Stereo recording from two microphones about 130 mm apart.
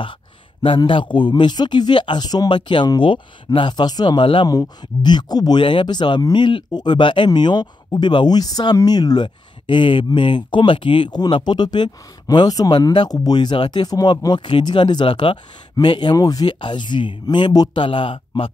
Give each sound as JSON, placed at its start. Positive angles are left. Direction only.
{"t": 0.0, "sound": "speech", "side_deg": 40}